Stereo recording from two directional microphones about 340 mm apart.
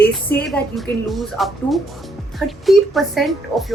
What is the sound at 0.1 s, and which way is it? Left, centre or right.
Speech, centre.